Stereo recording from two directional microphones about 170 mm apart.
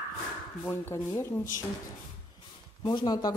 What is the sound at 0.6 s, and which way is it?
Speech, 15° left (ahead or behind).